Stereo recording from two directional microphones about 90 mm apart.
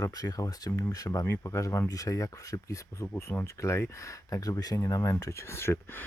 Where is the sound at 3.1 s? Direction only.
25° left (ahead or behind).